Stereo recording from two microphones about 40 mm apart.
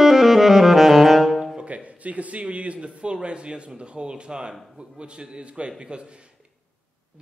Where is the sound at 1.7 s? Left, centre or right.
Right.